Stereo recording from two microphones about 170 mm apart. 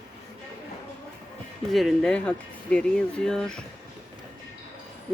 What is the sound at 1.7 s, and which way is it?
Speech, centre (ahead or behind).